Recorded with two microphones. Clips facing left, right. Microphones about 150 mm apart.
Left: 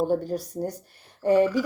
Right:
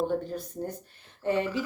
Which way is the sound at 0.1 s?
35° left (ahead or behind).